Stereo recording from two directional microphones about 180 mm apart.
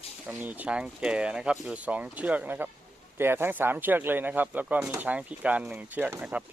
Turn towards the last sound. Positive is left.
turn(degrees=-5)  # may be behind; listen again after turning